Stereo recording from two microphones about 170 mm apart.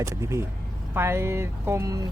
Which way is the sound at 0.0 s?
15° right (ahead or behind).